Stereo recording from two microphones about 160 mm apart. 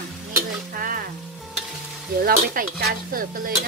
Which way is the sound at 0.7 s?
65° right (ahead or behind).